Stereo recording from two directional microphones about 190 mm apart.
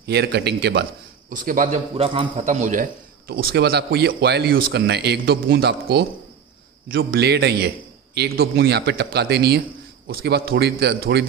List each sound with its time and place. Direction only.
0.0 s a man's voice: 60° right (ahead or behind)
1.3 s a man's voice: 45° right (ahead or behind)
2.0 s a man's voice: 30° right (ahead or behind)
2.4 s a man's voice: 40° right (ahead or behind); by 6.0 s 60° right (ahead or behind)
7.1 s a man's voice: 60° right (ahead or behind)